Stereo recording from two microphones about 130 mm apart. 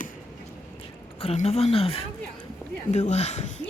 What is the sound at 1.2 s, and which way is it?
Speech, 55° left (ahead or behind).